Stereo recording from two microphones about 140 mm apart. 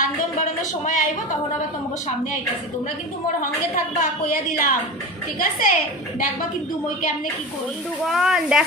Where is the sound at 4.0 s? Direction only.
80° left.